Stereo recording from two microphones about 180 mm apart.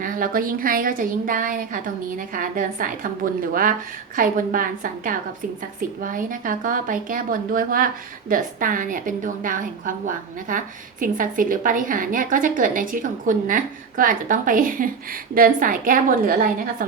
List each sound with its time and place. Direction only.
0.0 s a woman's voice: 50° right (ahead or behind)